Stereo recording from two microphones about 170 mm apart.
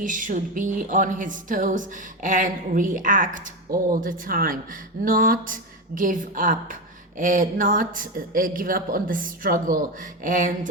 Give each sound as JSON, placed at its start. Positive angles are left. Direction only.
{"t": 0.0, "sound": "speech", "side_deg": -50}